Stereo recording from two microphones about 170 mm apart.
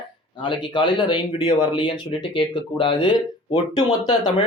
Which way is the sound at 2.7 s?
30° left (ahead or behind).